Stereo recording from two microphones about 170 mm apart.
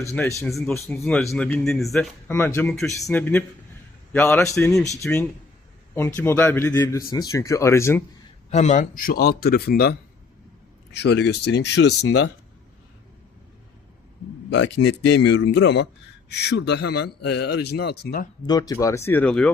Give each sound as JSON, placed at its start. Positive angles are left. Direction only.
{"t": 0.0, "sound": "speech", "side_deg": 15}
{"t": 0.4, "sound": "speech", "side_deg": 0}
{"t": 0.7, "sound": "speech", "side_deg": 15}
{"t": 1.0, "sound": "speech", "side_deg": 5}
{"t": 8.4, "sound": "a man's voice", "side_deg": 45}
{"t": 10.9, "sound": "speech", "side_deg": 80}
{"t": 14.5, "sound": "a man's voice", "side_deg": 90}
{"t": 16.3, "sound": "a man's voice", "side_deg": 75}
{"t": 18.4, "sound": "speech", "side_deg": 20}